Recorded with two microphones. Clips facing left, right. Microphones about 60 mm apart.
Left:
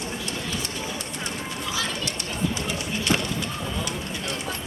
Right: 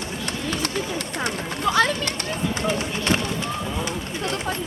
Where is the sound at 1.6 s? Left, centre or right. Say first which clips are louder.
Right 12 dB; right.